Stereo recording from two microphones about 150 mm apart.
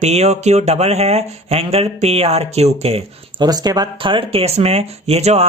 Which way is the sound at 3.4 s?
25° right (ahead or behind).